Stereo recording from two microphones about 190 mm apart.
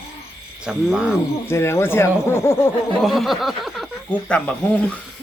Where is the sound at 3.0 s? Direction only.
Centre (ahead or behind).